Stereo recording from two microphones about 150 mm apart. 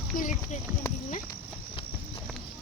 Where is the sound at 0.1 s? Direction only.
70° left (ahead or behind).